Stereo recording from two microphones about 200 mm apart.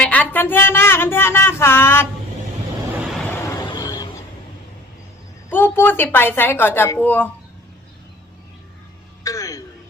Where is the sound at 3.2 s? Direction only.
10° left (ahead or behind).